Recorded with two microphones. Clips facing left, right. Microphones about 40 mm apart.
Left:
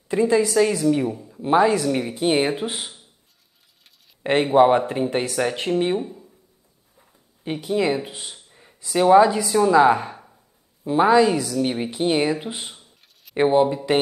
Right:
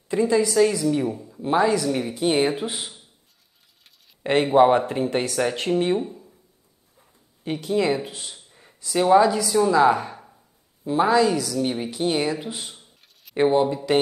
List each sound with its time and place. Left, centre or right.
0.1 s a woman's voice: centre
4.2 s a woman's voice: centre
7.0 s a sound: centre
8.1 s speech: centre
8.5 s a sound: centre
8.9 s a woman's voice: centre
13.4 s a woman's voice: centre
13.9 s speech: left